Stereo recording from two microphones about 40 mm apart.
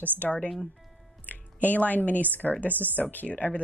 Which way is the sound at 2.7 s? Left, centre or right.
Right.